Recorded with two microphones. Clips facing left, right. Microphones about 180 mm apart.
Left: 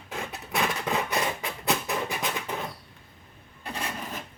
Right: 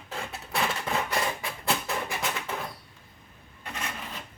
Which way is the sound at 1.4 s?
20° left (ahead or behind).